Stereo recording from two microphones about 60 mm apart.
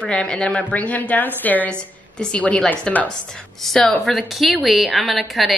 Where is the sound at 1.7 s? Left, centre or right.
Centre.